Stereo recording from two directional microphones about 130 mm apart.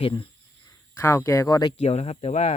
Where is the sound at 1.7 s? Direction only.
55° left (ahead or behind).